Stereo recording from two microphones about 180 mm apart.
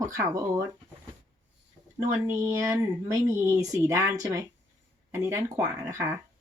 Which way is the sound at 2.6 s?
15° right (ahead or behind).